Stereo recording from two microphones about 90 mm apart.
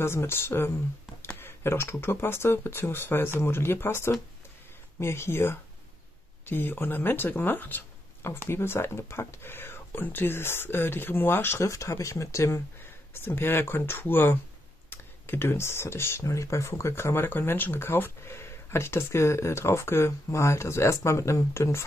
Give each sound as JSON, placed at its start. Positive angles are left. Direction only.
{"t": 0.0, "sound": "speech", "side_deg": 25}